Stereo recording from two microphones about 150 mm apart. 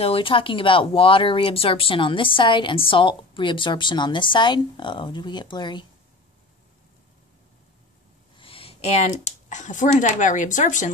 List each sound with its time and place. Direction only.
0.0 s speech: 35° left (ahead or behind)
8.4 s a sound: 40° left (ahead or behind)
9.5 s speech: 55° left (ahead or behind)